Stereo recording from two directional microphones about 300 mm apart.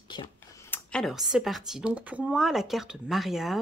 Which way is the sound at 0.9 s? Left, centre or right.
Centre.